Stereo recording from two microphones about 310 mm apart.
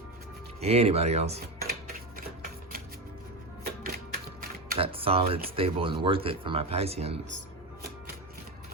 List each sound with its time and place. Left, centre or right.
0.6 s speech: centre
2.1 s a sound: right
3.8 s speech: right